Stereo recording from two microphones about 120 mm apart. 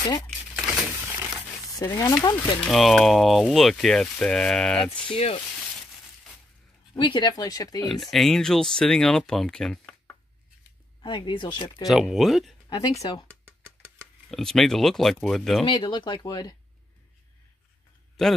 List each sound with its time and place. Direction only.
0.8 s a sound: 20° right (ahead or behind)
1.7 s speech: 30° left (ahead or behind)
2.7 s speech: centre (ahead or behind)
5.1 s speech: 50° left (ahead or behind)
7.0 s speech: 40° left (ahead or behind)
7.9 s speech: centre (ahead or behind)
11.0 s speech: 40° left (ahead or behind)
11.8 s speech: centre (ahead or behind)
12.6 s speech: 35° left (ahead or behind)
14.3 s speech: 5° left (ahead or behind)
15.6 s speech: 45° left (ahead or behind)
18.2 s a man's voice: 5° left (ahead or behind)